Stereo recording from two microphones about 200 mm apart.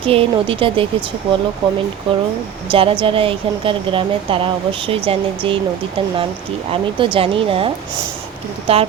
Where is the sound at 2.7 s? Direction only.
25° right (ahead or behind).